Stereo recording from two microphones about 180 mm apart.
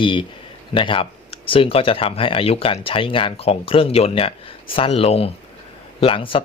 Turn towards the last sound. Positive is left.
turn(degrees=30)  # may be behind; listen again after turning